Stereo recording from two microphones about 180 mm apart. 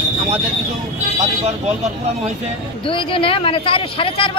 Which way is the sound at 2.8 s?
30° left (ahead or behind).